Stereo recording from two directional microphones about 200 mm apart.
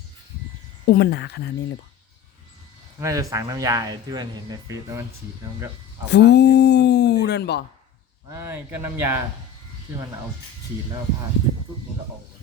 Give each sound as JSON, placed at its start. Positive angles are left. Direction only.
{"t": 0.9, "sound": "speech", "side_deg": 55}
{"t": 3.0, "sound": "speech", "side_deg": -15}
{"t": 6.1, "sound": "a sound", "side_deg": 60}
{"t": 8.3, "sound": "speech", "side_deg": -10}